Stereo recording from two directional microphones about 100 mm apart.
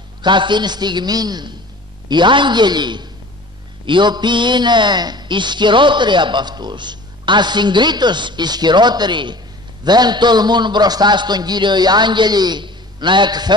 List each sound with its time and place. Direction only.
0.2 s a man's voice: 50° right (ahead or behind)